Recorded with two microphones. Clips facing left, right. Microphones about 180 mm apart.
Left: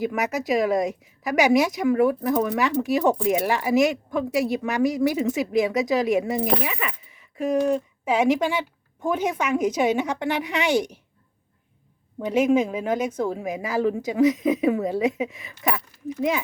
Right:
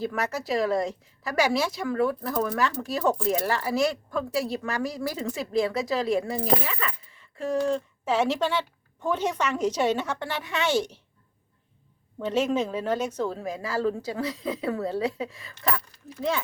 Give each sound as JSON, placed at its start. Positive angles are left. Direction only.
{"t": 0.0, "sound": "a woman's voice", "side_deg": 15}
{"t": 12.2, "sound": "a woman's voice", "side_deg": 10}